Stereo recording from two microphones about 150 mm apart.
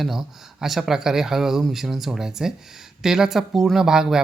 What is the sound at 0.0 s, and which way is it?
Speech, centre (ahead or behind).